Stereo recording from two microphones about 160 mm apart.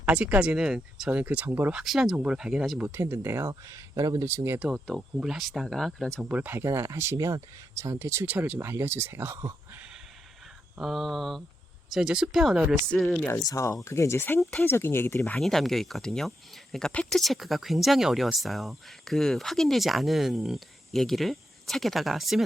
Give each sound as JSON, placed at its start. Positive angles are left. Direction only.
{"t": 0.0, "sound": "speech", "side_deg": -10}
{"t": 1.8, "sound": "speech", "side_deg": 0}
{"t": 4.7, "sound": "speech", "side_deg": -5}
{"t": 6.2, "sound": "speech", "side_deg": -10}
{"t": 10.8, "sound": "speech", "side_deg": 0}
{"t": 13.2, "sound": "speech", "side_deg": 20}
{"t": 15.4, "sound": "speech", "side_deg": 0}